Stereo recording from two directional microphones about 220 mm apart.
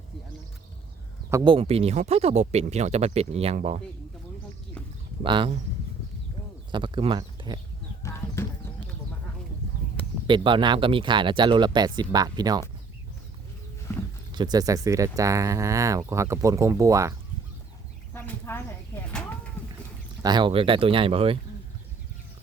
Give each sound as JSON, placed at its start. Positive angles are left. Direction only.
{"t": 1.3, "sound": "speech", "side_deg": -20}
{"t": 5.2, "sound": "speech", "side_deg": -20}
{"t": 6.7, "sound": "speech", "side_deg": -20}
{"t": 8.0, "sound": "clip-clop", "side_deg": 10}
{"t": 10.2, "sound": "speech", "side_deg": -20}
{"t": 14.3, "sound": "speech", "side_deg": -20}
{"t": 18.1, "sound": "a sound", "side_deg": 10}
{"t": 20.2, "sound": "speech", "side_deg": -20}